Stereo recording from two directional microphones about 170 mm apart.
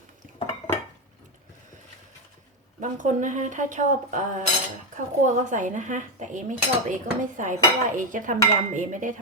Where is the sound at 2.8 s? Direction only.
45° right (ahead or behind).